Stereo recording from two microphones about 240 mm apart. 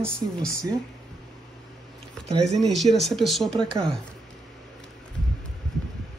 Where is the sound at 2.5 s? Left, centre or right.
Centre.